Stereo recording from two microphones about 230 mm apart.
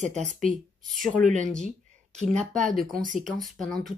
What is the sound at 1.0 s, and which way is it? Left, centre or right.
Speech, centre.